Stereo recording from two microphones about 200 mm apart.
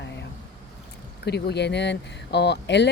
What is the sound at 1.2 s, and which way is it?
Speech, 55° left (ahead or behind).